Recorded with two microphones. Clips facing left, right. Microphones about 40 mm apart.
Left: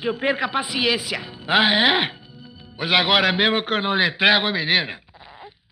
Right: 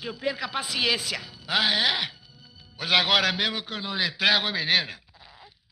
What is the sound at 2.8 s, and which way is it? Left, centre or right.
Speech, centre.